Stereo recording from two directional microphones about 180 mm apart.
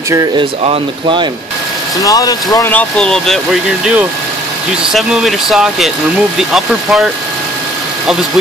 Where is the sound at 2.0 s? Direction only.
20° left (ahead or behind); by 3.3 s 5° left (ahead or behind).